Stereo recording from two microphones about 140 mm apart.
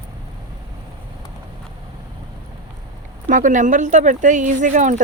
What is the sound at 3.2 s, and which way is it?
Speech, 65° right (ahead or behind).